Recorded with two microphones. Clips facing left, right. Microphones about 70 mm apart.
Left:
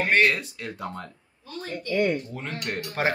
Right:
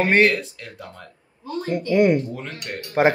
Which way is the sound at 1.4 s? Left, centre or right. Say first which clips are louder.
Right 8 dB; right.